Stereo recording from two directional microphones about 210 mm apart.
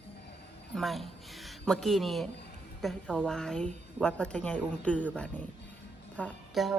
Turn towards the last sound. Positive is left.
turn(degrees=5)  # may be behind; listen again after turning